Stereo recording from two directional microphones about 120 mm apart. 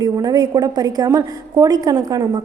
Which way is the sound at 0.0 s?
35° right (ahead or behind).